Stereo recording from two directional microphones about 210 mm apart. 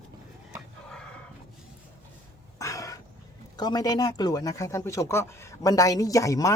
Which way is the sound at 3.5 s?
20° left (ahead or behind).